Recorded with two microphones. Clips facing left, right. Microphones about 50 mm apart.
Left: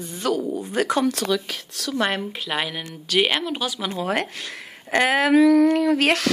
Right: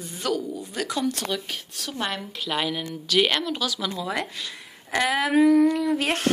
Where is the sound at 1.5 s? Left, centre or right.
Left.